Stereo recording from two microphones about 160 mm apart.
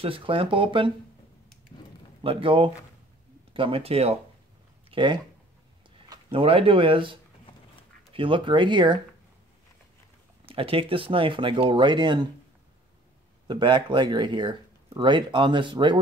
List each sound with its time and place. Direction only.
0.0 s speech: 35° right (ahead or behind)
2.2 s speech: 35° right (ahead or behind)
6.3 s speech: 35° right (ahead or behind)
10.5 s speech: 35° right (ahead or behind)
13.5 s speech: 30° right (ahead or behind)